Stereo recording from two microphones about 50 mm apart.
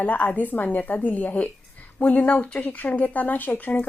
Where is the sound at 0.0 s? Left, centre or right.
Left.